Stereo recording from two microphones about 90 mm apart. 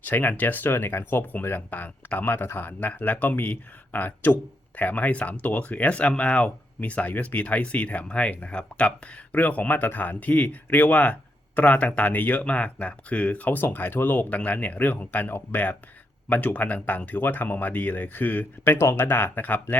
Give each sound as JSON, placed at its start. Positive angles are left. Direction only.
{"t": 0.0, "sound": "speech", "side_deg": 20}